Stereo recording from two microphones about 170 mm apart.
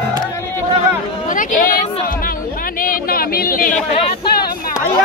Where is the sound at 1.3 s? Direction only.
50° left (ahead or behind).